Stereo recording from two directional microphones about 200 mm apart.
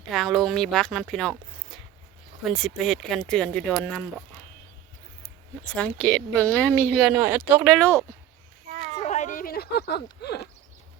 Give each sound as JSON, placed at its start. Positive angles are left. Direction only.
{"t": 0.1, "sound": "speech", "side_deg": 0}
{"t": 5.6, "sound": "speech", "side_deg": 5}
{"t": 7.8, "sound": "speech", "side_deg": 10}
{"t": 9.0, "sound": "a sound", "side_deg": 35}